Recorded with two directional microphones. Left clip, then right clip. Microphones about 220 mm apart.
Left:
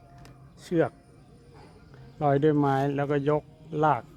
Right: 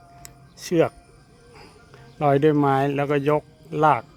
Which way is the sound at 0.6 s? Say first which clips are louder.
Right 5 dB; 30° right (ahead or behind).